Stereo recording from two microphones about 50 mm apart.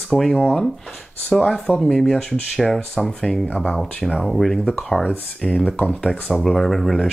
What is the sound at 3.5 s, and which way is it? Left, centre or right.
Speech, centre.